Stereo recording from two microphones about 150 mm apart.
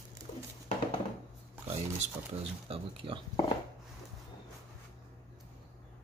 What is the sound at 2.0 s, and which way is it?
Speech, 40° right (ahead or behind).